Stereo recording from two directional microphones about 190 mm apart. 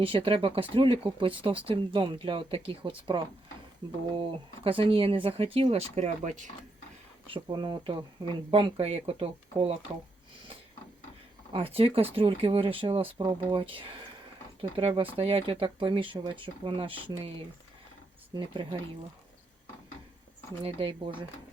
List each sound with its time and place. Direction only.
0.0 s speech: 30° right (ahead or behind)
7.3 s speech: 25° right (ahead or behind)
11.5 s speech: 30° right (ahead or behind)
18.3 s speech: 20° right (ahead or behind)
20.7 s speech: 30° right (ahead or behind)